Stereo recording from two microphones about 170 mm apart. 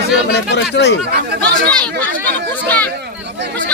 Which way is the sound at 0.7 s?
90° left.